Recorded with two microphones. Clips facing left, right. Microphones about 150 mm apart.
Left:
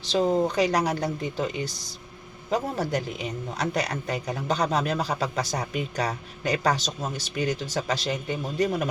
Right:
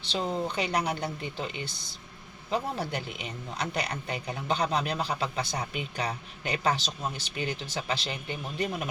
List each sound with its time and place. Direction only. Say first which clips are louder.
0.0 s speech: left 8 dB; 40° left (ahead or behind)